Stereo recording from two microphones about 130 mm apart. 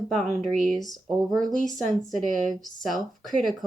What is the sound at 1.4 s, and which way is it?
Speech, 90° right.